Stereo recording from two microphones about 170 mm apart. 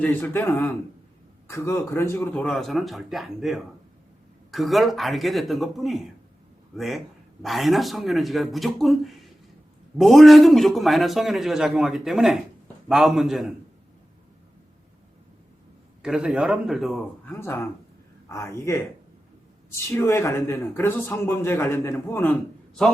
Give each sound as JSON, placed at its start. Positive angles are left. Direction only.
{"t": 0.0, "sound": "speech", "side_deg": 10}
{"t": 2.4, "sound": "a man's voice", "side_deg": 0}
{"t": 16.0, "sound": "a man's voice", "side_deg": -5}
{"t": 17.3, "sound": "speech", "side_deg": 15}